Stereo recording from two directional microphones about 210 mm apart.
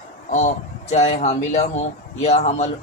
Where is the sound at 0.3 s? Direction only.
35° left (ahead or behind).